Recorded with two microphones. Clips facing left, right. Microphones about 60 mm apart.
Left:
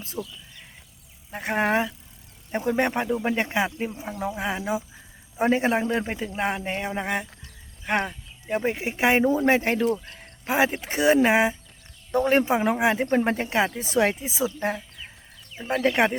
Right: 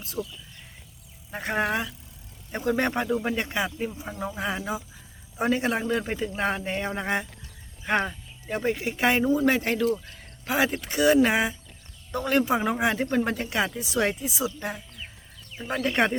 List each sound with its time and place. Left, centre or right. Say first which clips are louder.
0.2 s a man's voice: right 1 dB; centre
1.4 s a man's voice: left 3 dB; centre
13.1 s speech: left 3 dB; left
15.5 s speech: left 4 dB; centre